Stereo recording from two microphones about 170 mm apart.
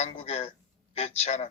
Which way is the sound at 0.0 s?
40° left (ahead or behind).